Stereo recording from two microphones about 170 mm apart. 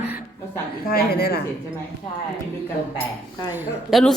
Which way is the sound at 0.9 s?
65° left (ahead or behind).